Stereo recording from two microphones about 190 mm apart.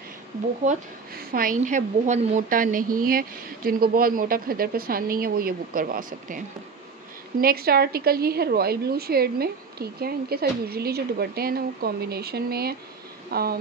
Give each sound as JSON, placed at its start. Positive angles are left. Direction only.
{"t": 0.7, "sound": "a woman's voice", "side_deg": -50}